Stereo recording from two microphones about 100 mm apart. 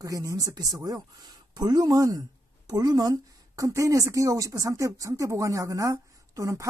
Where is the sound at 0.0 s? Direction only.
35° right (ahead or behind).